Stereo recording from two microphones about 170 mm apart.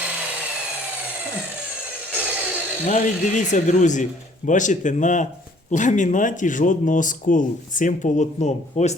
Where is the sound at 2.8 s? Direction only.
45° left (ahead or behind).